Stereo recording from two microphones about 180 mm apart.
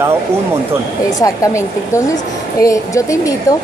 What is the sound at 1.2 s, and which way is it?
A woman's voice, 15° left (ahead or behind).